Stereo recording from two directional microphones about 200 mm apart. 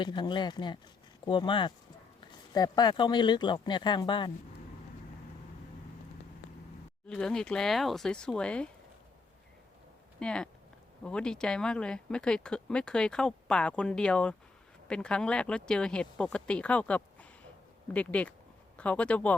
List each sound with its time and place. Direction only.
0.0 s speech: 20° left (ahead or behind)
7.1 s speech: 5° left (ahead or behind)
10.2 s a sound: 5° left (ahead or behind)
11.0 s speech: 5° left (ahead or behind)